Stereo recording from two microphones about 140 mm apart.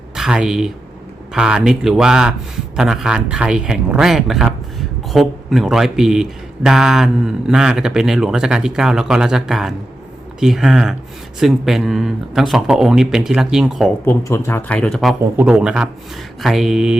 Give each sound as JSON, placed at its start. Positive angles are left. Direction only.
{"t": 0.2, "sound": "speech", "side_deg": -5}
{"t": 14.0, "sound": "speech", "side_deg": 20}
{"t": 15.4, "sound": "speech", "side_deg": -5}